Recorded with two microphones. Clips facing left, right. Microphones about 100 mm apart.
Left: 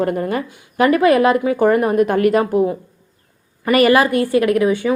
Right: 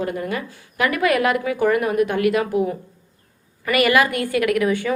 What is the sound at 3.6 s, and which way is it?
A woman's voice, 35° left (ahead or behind).